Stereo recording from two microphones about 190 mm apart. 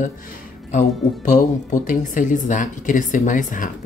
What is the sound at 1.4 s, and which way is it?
Speech, 45° left (ahead or behind).